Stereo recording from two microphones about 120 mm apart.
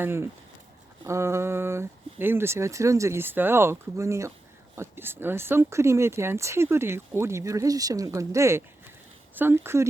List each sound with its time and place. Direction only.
0.0 s speech: 20° right (ahead or behind)